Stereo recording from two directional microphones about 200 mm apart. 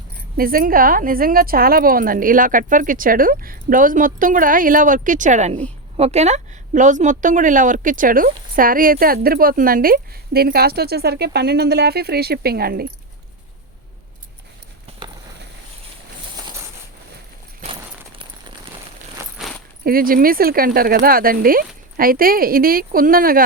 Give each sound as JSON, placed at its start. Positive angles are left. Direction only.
{"t": 0.3, "sound": "a woman's voice", "side_deg": -45}
{"t": 19.2, "sound": "a sound", "side_deg": -15}
{"t": 19.8, "sound": "a woman's voice", "side_deg": -45}